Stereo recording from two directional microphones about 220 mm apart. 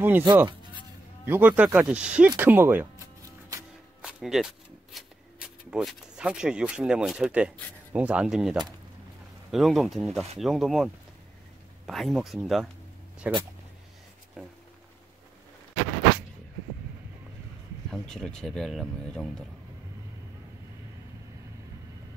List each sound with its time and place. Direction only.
0.0 s speech: 10° right (ahead or behind)
0.5 s a sound: 20° right (ahead or behind)
1.3 s speech: 5° right (ahead or behind)
4.0 s speech: centre (ahead or behind)
17.9 s speech: 5° left (ahead or behind)